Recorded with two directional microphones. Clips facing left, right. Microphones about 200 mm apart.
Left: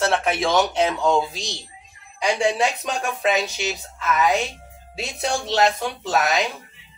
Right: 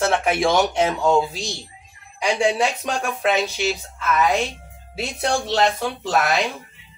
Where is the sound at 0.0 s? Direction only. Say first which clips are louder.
Right 2 dB; 15° right (ahead or behind).